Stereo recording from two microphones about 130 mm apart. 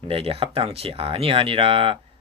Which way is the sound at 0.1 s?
45° right (ahead or behind).